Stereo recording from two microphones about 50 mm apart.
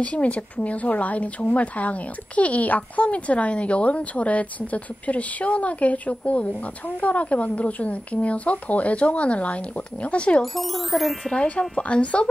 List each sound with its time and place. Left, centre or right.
0.0 s speech: left
10.4 s speech: centre
11.3 s speech: left